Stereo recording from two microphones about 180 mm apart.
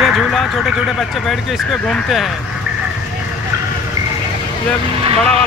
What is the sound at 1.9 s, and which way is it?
Speech, centre (ahead or behind).